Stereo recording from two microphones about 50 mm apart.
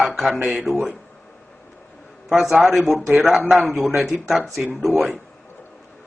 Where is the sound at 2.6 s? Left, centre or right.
Right.